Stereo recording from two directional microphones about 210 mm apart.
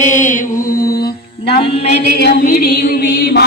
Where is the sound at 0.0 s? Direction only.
35° left (ahead or behind).